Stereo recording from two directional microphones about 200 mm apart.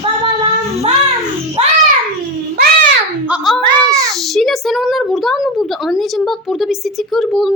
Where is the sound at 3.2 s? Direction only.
5° right (ahead or behind).